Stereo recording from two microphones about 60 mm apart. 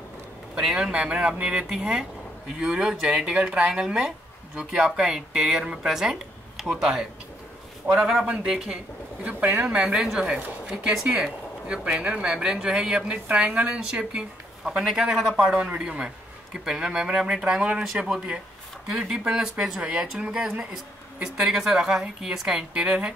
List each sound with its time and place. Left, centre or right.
0.6 s a man's voice: centre
0.9 s speech: centre
9.2 s speech: right